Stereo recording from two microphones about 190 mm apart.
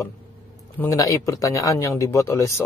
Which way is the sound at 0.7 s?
15° left (ahead or behind).